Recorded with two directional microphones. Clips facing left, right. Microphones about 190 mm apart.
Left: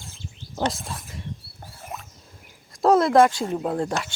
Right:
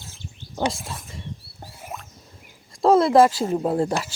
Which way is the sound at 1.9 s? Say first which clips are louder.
Even; centre (ahead or behind).